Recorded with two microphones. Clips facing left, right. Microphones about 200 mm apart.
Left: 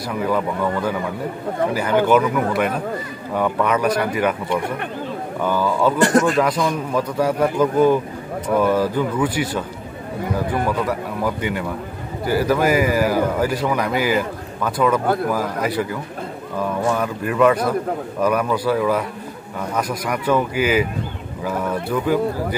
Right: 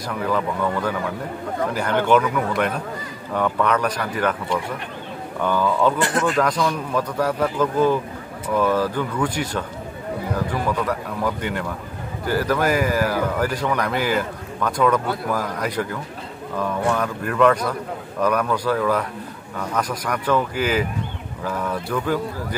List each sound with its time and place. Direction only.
0.1 s speech: 5° left (ahead or behind)
1.7 s speech: 10° left (ahead or behind)
5.4 s speech: 10° left (ahead or behind)
5.9 s speech: 45° left (ahead or behind)
6.3 s speech: 10° left (ahead or behind)